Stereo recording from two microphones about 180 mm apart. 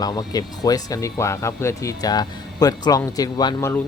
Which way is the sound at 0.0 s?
20° left (ahead or behind).